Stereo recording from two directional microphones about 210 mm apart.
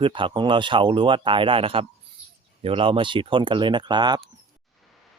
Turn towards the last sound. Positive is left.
turn(degrees=-20)  # may be behind; listen again after turning